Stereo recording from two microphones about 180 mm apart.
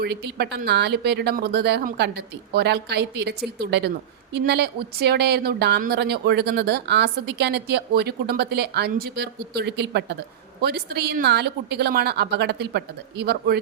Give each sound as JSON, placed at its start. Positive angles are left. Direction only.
{"t": 0.0, "sound": "speech", "side_deg": -65}